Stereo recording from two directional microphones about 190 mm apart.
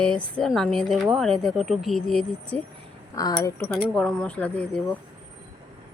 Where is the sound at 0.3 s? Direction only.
Centre (ahead or behind).